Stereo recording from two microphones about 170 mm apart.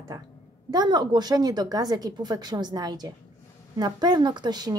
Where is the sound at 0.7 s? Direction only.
25° right (ahead or behind).